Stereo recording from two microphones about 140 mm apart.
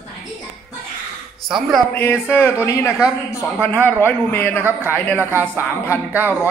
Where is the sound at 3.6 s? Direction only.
15° left (ahead or behind).